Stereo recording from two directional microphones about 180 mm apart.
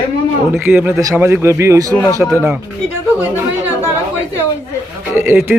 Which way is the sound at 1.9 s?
15° left (ahead or behind).